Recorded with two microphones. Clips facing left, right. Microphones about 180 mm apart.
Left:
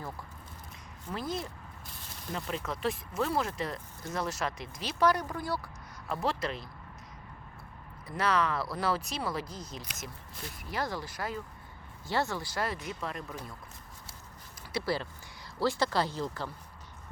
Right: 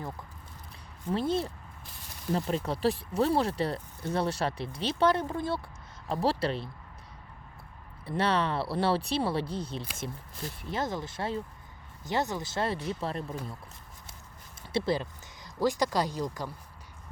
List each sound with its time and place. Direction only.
1.1 s speech: 30° right (ahead or behind)
8.0 s speech: 30° right (ahead or behind)
14.7 s speech: 25° right (ahead or behind)